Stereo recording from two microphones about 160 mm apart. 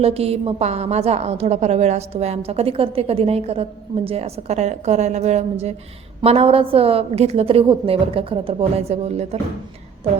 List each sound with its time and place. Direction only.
0.0 s a woman's voice: 40° right (ahead or behind)